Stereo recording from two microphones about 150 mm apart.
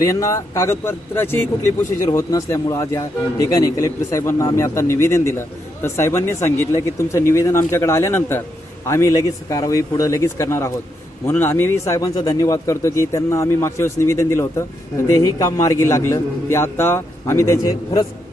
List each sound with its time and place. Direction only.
0.0 s a man's voice: 20° left (ahead or behind)